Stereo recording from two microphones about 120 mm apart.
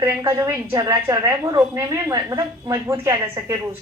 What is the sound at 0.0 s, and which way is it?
A woman's voice, 25° right (ahead or behind).